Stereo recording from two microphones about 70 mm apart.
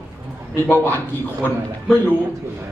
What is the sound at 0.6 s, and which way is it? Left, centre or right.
Speech, left.